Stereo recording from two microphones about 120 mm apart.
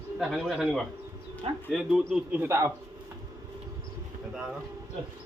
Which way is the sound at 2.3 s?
20° right (ahead or behind).